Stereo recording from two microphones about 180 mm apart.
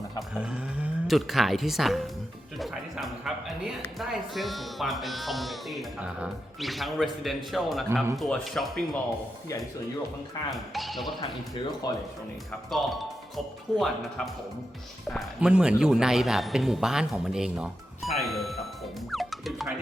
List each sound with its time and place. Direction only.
0.2 s a woman's voice: 5° right (ahead or behind)
10.5 s a woman's voice: centre (ahead or behind)
11.8 s speech: 20° left (ahead or behind)
12.7 s a woman's voice: centre (ahead or behind)
15.1 s a woman's voice: 5° right (ahead or behind)
19.1 s music: centre (ahead or behind)